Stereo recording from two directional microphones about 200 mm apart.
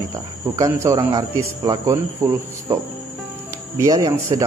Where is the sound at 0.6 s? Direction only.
15° right (ahead or behind).